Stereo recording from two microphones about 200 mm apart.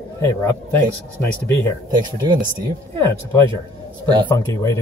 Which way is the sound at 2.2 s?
20° right (ahead or behind).